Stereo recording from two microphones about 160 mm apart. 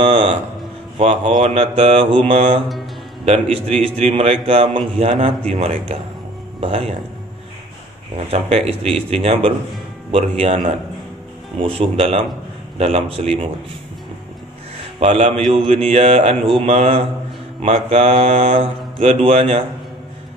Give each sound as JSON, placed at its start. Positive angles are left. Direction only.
{"t": 0.0, "sound": "a man's voice", "side_deg": -35}
{"t": 8.3, "sound": "a man's voice", "side_deg": -40}
{"t": 15.0, "sound": "a man's voice", "side_deg": -40}